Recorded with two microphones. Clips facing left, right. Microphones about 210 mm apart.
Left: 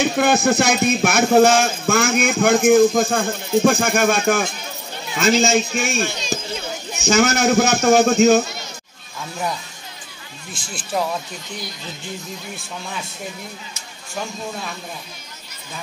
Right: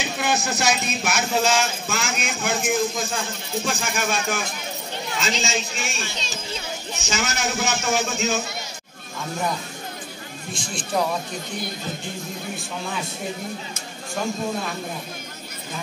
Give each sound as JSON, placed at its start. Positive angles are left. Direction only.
{"t": 0.0, "sound": "speech", "side_deg": 55}
{"t": 10.5, "sound": "speech", "side_deg": 0}